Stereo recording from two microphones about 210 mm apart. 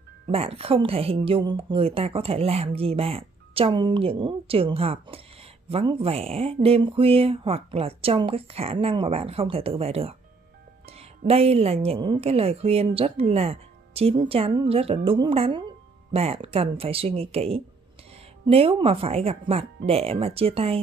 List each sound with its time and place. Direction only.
0.3 s a woman's voice: 25° right (ahead or behind)